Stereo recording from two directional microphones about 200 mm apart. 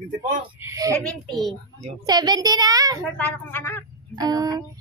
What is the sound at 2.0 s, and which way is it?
Speech, 20° right (ahead or behind).